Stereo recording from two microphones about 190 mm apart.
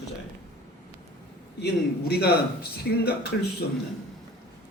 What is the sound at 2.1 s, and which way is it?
A man's voice, 55° left (ahead or behind).